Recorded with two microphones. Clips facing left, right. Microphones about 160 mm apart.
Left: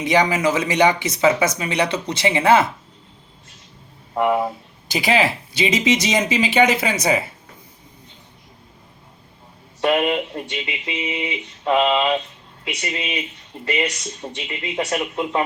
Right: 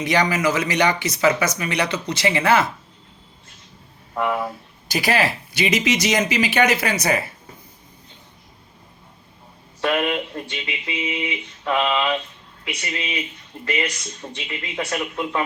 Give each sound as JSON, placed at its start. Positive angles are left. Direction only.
{"t": 0.0, "sound": "speech", "side_deg": 25}
{"t": 4.1, "sound": "speech", "side_deg": 25}
{"t": 9.8, "sound": "speech", "side_deg": 25}
{"t": 14.2, "sound": "speech", "side_deg": 40}
{"t": 14.8, "sound": "speech", "side_deg": 20}